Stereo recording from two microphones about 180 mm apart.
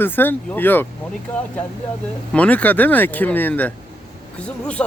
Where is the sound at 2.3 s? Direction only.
10° left (ahead or behind).